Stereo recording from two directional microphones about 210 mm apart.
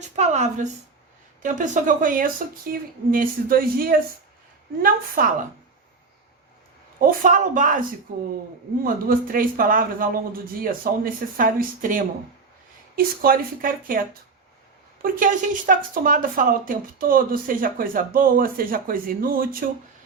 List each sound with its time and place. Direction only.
0.2 s a woman's voice: 35° right (ahead or behind)
7.0 s a woman's voice: 40° right (ahead or behind)
15.0 s speech: 40° right (ahead or behind)